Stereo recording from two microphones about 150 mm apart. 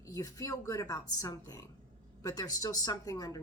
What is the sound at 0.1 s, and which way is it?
Speech, 25° left (ahead or behind).